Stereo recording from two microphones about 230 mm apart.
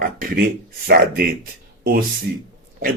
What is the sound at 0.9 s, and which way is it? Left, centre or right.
Speech, right.